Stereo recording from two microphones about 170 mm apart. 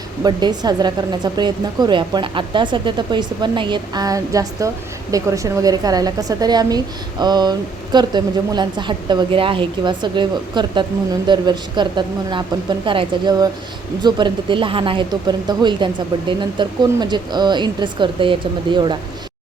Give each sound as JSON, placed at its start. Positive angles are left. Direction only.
{"t": 0.2, "sound": "a woman's voice", "side_deg": -25}